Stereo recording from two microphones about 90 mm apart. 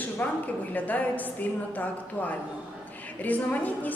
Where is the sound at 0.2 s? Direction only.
20° left (ahead or behind).